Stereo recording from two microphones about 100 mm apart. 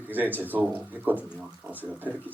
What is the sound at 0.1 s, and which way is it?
Speech, 20° right (ahead or behind).